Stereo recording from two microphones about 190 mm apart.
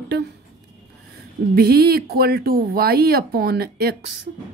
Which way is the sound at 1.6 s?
55° right (ahead or behind).